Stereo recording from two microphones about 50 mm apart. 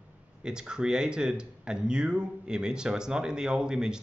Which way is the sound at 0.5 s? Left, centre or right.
Centre.